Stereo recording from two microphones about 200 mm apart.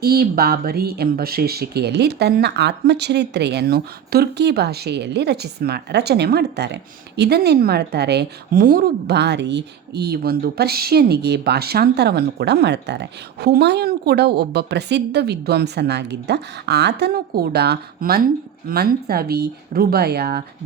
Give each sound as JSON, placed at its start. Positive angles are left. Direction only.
{"t": 0.0, "sound": "a woman's voice", "side_deg": -50}